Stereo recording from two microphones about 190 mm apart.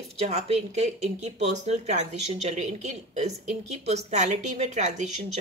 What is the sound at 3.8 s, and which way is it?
Speech, 35° right (ahead or behind).